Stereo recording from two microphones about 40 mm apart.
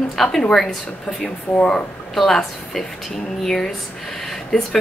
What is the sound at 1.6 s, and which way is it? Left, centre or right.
Speech, left.